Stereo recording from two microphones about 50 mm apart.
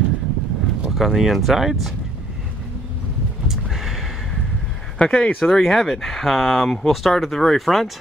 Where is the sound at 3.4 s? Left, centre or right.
Centre.